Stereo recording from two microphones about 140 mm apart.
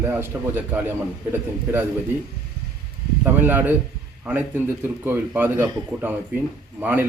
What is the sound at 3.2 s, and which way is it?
A man's voice, 15° right (ahead or behind).